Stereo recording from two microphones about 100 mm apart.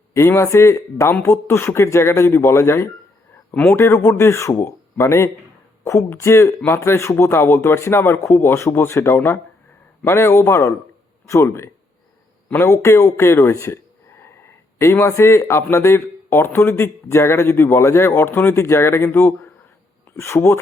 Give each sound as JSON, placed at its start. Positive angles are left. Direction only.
{"t": 0.1, "sound": "speech", "side_deg": 25}
{"t": 14.2, "sound": "a sound", "side_deg": 25}
{"t": 15.6, "sound": "speech", "side_deg": 25}